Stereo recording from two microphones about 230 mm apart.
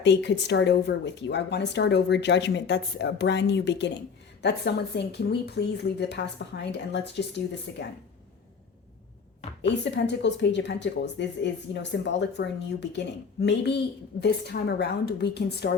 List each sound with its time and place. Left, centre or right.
0.0 s speech: left
9.8 s speech: left